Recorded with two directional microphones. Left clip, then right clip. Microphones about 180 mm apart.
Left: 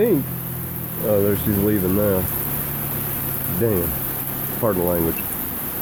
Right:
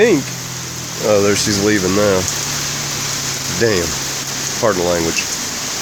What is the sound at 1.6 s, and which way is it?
Speech, 20° right (ahead or behind).